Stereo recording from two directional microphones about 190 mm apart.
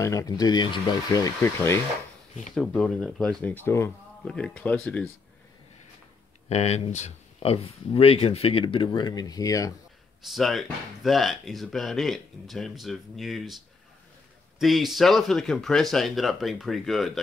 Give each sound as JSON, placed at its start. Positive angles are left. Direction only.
{"t": 0.0, "sound": "speech", "side_deg": 15}
{"t": 6.5, "sound": "speech", "side_deg": 35}
{"t": 10.2, "sound": "speech", "side_deg": 0}
{"t": 14.6, "sound": "speech", "side_deg": 0}